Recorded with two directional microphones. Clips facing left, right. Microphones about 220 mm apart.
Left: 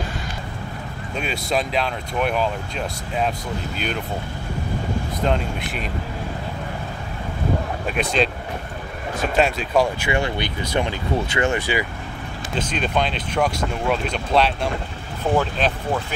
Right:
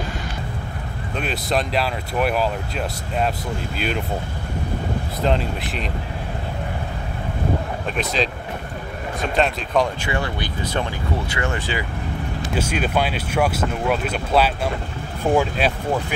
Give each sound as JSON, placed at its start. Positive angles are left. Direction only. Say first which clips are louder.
{"t": 1.1, "sound": "speech", "louder": "right 1 dB", "side_deg": 0}
{"t": 3.7, "sound": "speech", "louder": "right 3 dB", "side_deg": 0}
{"t": 5.2, "sound": "speech", "louder": "right 2 dB", "side_deg": 0}
{"t": 8.0, "sound": "speech", "louder": "left 2 dB", "side_deg": 0}
{"t": 9.4, "sound": "speech", "louder": "left 1 dB", "side_deg": 5}
{"t": 10.0, "sound": "speech", "louder": "left 2 dB", "side_deg": 20}
{"t": 12.5, "sound": "speech", "louder": "right 1 dB", "side_deg": -10}